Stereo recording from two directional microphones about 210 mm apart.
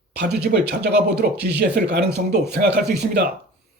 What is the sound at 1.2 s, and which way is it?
Speech, 45° right (ahead or behind).